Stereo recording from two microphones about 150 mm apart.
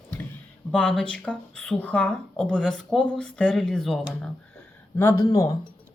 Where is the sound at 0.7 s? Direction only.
5° left (ahead or behind).